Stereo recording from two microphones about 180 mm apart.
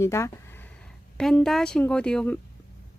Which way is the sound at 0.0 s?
15° left (ahead or behind).